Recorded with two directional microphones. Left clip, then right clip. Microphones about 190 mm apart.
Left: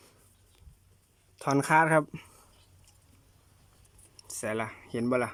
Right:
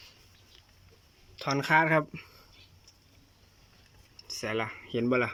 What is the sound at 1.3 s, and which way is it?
Speech, 10° left (ahead or behind).